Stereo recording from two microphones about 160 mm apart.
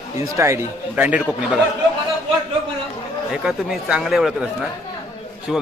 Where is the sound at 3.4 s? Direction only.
5° right (ahead or behind).